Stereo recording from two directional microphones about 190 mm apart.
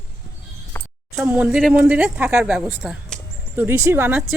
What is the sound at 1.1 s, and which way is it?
Speech, 10° right (ahead or behind).